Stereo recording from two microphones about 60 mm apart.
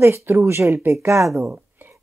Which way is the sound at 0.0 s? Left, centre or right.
Right.